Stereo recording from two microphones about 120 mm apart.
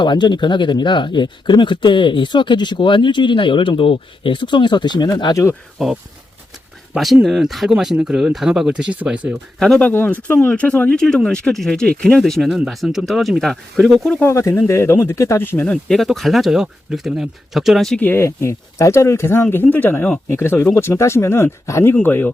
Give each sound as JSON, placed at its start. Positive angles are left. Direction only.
{"t": 0.0, "sound": "speech", "side_deg": 40}
{"t": 5.8, "sound": "speech", "side_deg": 0}
{"t": 9.6, "sound": "speech", "side_deg": 5}
{"t": 14.3, "sound": "speech", "side_deg": 25}
{"t": 18.0, "sound": "speech", "side_deg": 20}